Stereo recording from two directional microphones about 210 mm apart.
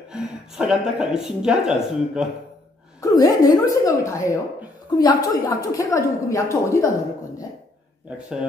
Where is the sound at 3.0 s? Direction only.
15° left (ahead or behind).